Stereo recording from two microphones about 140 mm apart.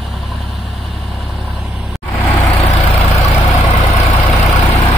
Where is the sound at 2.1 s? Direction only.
15° left (ahead or behind).